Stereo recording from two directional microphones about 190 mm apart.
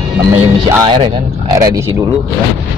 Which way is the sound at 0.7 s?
20° right (ahead or behind).